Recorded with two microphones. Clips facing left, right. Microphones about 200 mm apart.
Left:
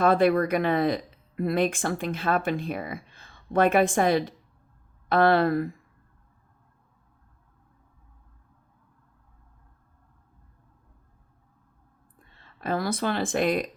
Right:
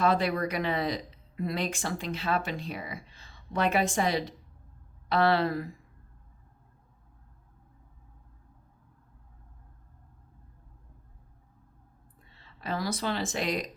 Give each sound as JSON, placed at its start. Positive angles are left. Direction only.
{"t": 0.0, "sound": "speech", "side_deg": 55}
{"t": 12.2, "sound": "speech", "side_deg": 50}